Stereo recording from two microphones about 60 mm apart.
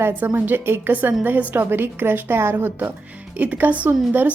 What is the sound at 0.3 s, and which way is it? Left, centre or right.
A woman's voice, right.